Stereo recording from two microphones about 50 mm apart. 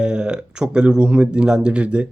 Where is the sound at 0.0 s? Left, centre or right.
Centre.